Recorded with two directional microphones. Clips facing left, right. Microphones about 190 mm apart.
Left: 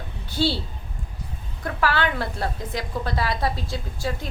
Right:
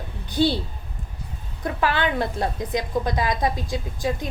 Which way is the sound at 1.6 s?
20° right (ahead or behind).